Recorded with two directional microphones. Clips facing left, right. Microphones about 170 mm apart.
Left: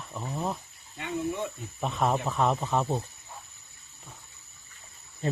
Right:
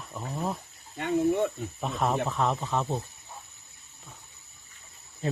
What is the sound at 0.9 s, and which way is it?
Speech, 50° right (ahead or behind).